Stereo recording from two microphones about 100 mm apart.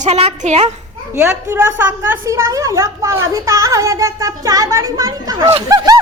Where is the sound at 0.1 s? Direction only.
90° right.